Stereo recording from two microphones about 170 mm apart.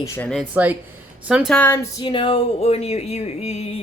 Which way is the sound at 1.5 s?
15° left (ahead or behind).